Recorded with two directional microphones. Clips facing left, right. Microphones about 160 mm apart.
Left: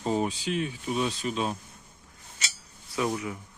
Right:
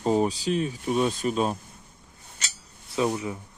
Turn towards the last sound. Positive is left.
turn(degrees=-30)  # may be behind; listen again after turning